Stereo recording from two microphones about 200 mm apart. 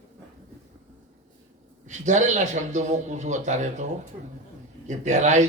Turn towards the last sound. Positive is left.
turn(degrees=-35)  # may be behind; listen again after turning